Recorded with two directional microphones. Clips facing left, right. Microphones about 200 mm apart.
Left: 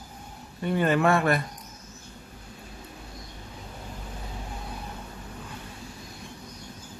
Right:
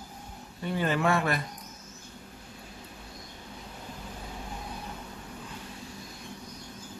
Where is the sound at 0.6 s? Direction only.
55° left (ahead or behind).